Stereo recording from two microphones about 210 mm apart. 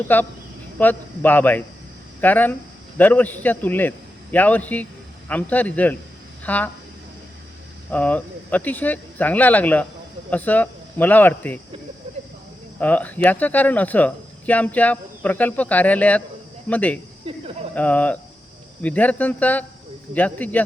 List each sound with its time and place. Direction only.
0.1 s speech: 10° left (ahead or behind)
7.9 s speech: 5° left (ahead or behind)
12.8 s speech: 10° left (ahead or behind)
17.2 s a sound: 25° right (ahead or behind)
17.7 s speech: 5° left (ahead or behind)